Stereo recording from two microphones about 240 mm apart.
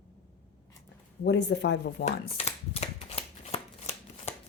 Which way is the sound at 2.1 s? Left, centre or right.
Left.